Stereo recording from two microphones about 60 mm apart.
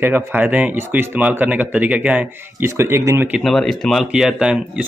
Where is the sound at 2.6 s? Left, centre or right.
Right.